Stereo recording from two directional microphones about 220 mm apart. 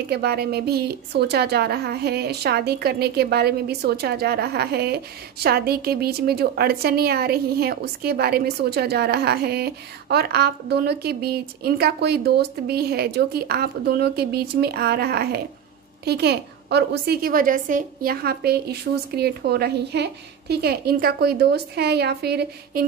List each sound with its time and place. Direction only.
0.1 s a woman's voice: 45° right (ahead or behind)